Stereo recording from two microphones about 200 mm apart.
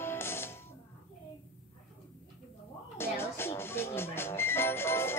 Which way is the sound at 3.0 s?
10° left (ahead or behind).